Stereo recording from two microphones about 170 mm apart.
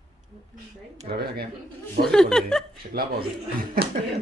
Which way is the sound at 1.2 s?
65° right (ahead or behind).